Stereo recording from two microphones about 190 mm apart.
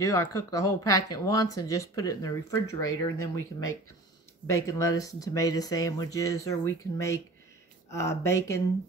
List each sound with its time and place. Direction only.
0.0 s speech: 15° left (ahead or behind)